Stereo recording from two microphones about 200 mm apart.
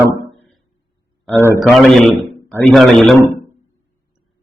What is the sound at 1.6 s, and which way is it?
A man's voice, centre (ahead or behind).